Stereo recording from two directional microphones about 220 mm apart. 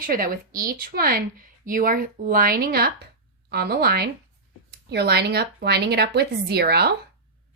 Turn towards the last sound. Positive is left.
turn(degrees=-45)  # may be behind; listen again after turning